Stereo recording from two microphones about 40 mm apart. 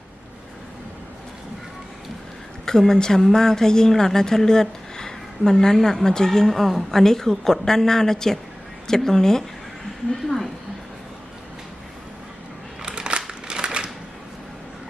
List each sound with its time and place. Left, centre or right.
2.6 s speech: centre
6.5 s speech: centre
12.8 s crushing: right
13.5 s typewriter: right